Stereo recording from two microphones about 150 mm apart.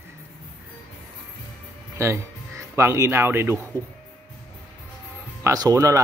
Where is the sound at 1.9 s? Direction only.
20° right (ahead or behind).